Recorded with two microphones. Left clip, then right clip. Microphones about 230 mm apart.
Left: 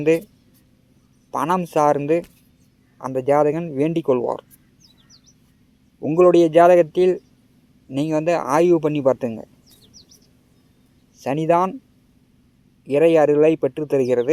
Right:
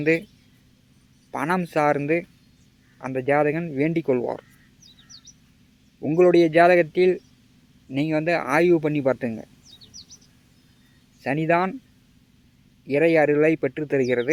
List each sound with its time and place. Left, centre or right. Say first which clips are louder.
0.0 s speech: left 4 dB; centre
1.3 s speech: left 4 dB; centre
6.0 s speech: left 3 dB; centre
11.2 s speech: left 4 dB; centre
12.9 s speech: left 4 dB; centre